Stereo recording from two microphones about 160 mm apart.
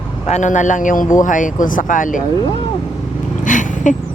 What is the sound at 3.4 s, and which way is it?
Vehicle, 55° left (ahead or behind).